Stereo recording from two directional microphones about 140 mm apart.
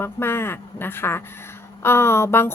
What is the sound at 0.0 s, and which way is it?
A woman's voice, 15° left (ahead or behind).